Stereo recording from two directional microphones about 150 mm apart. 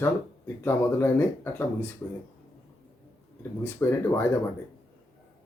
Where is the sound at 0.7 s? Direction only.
15° left (ahead or behind).